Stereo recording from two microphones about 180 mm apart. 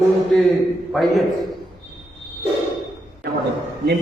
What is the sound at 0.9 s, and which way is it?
Speech, centre (ahead or behind).